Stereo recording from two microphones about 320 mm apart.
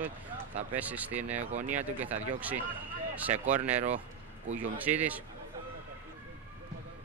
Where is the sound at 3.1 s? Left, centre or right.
Centre.